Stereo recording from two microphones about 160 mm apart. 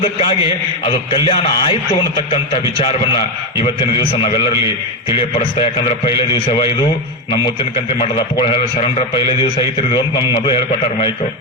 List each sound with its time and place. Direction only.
0.0 s a man's voice: 35° left (ahead or behind)
7.9 s a man's voice: 35° left (ahead or behind)